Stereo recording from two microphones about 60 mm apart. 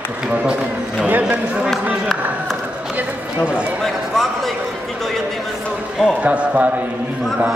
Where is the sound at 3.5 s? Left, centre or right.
Right.